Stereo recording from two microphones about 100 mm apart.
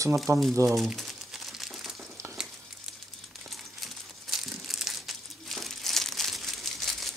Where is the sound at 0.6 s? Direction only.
Centre (ahead or behind).